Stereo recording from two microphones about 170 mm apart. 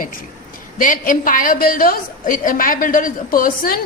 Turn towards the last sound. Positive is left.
turn(degrees=55)  # may be behind; listen again after turning